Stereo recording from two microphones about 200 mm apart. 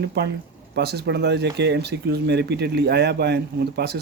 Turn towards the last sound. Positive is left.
turn(degrees=-55)  # may be behind; listen again after turning